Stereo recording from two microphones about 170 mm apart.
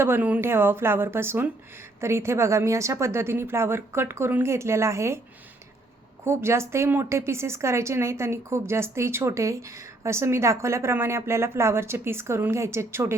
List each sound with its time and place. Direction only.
0.0 s a woman's voice: 10° right (ahead or behind)
6.2 s a woman's voice: 15° right (ahead or behind)